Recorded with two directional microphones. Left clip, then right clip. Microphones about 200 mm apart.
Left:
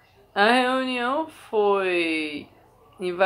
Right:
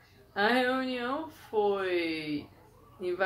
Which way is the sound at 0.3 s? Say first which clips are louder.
Left 8 dB; 15° left (ahead or behind).